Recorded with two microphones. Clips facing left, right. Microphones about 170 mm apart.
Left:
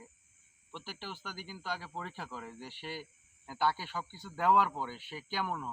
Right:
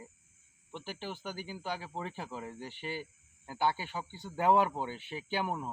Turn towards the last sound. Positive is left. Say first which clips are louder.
# right 2 dB
turn(degrees=-20)  # may be behind; listen again after turning